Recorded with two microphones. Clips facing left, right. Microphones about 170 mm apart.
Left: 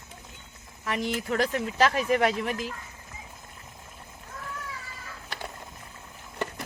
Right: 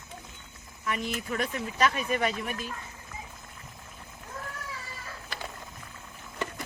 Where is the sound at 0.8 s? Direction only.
80° left.